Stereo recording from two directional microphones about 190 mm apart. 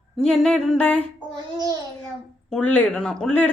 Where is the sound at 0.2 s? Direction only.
Centre (ahead or behind).